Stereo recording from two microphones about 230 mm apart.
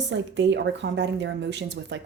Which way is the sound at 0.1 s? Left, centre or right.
Right.